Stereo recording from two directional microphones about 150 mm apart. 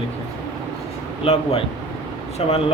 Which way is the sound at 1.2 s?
40° left (ahead or behind).